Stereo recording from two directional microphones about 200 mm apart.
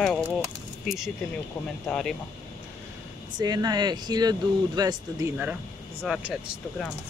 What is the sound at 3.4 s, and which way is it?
Speech, 20° right (ahead or behind).